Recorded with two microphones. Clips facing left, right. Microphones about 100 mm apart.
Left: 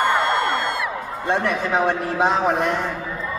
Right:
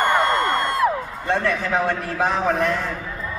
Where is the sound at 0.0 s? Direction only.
45° right (ahead or behind).